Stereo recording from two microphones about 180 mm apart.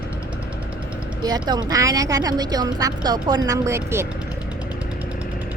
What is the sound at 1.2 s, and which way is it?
A woman's voice, 20° right (ahead or behind).